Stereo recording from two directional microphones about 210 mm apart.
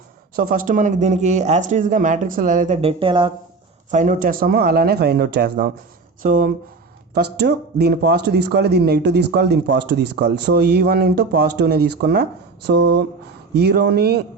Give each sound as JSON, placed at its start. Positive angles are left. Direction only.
{"t": 0.3, "sound": "speech", "side_deg": -40}
{"t": 3.9, "sound": "speech", "side_deg": -40}
{"t": 7.1, "sound": "speech", "side_deg": -50}